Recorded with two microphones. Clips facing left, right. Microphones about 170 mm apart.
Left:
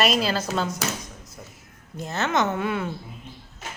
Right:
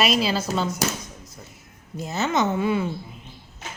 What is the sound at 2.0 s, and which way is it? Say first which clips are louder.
Speech: right 1 dB; 5° right (ahead or behind).